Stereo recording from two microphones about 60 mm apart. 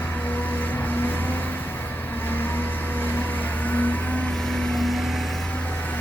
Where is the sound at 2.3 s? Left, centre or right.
Left.